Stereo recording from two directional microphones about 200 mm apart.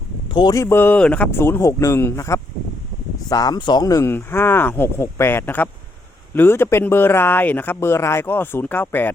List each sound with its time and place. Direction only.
0.3 s speech: 20° left (ahead or behind)